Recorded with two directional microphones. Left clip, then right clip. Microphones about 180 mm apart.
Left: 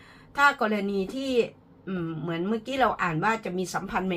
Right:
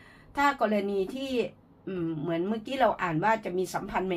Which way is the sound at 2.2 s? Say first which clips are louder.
Left 3 dB; 30° right (ahead or behind).